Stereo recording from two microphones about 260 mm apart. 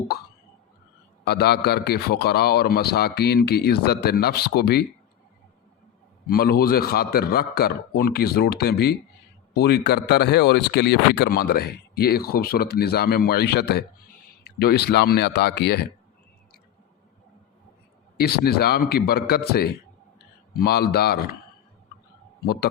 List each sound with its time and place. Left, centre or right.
1.2 s speech: left
6.2 s speech: left
18.2 s speech: left